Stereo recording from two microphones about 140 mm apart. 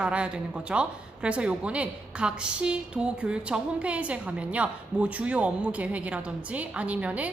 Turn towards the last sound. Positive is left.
turn(degrees=-10)  # may be behind; listen again after turning